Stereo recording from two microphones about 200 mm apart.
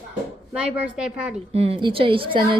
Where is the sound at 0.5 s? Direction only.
5° right (ahead or behind).